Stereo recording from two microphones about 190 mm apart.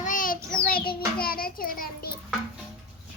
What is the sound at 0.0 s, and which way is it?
Child singing, 45° left (ahead or behind).